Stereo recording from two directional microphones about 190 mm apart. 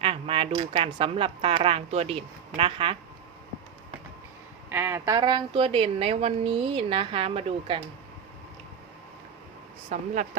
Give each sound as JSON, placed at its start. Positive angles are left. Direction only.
{"t": 0.0, "sound": "speech", "side_deg": -30}
{"t": 4.7, "sound": "speech", "side_deg": -10}
{"t": 9.9, "sound": "speech", "side_deg": -35}